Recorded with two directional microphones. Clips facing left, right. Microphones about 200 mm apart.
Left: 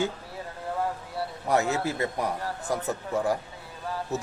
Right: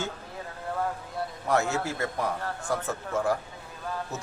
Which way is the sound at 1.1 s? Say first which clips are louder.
Left 1 dB; 15° left (ahead or behind).